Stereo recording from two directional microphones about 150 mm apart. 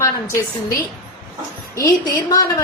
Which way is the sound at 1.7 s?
25° left (ahead or behind).